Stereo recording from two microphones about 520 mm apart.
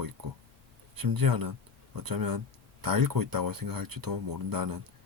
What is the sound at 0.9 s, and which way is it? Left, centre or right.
Speech, right.